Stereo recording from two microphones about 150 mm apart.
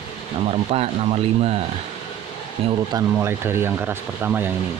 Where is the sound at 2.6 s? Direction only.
40° right (ahead or behind).